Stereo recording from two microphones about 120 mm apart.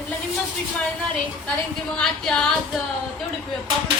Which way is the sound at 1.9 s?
5° left (ahead or behind).